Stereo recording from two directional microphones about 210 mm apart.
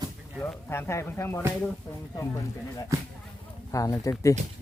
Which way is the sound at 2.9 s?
15° right (ahead or behind).